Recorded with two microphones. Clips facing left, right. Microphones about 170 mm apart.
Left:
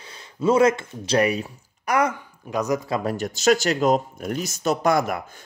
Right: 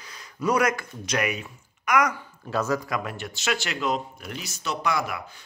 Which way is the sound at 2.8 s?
35° left (ahead or behind).